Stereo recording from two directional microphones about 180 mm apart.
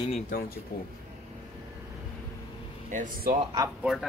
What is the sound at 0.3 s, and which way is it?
Speech, 50° left (ahead or behind).